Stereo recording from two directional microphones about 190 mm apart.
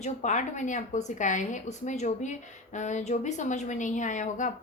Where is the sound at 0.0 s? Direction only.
40° left (ahead or behind).